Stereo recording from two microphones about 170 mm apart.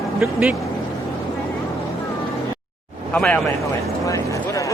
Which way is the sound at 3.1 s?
5° left (ahead or behind).